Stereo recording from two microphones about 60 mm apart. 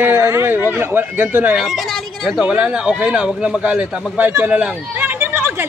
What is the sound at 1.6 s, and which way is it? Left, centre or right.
Speech, centre.